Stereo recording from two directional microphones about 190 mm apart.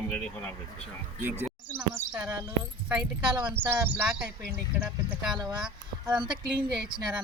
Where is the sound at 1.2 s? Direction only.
10° right (ahead or behind).